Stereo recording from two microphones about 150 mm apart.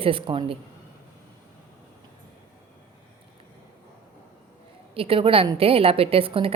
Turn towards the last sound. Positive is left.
turn(degrees=-40)  # may be behind; listen again after turning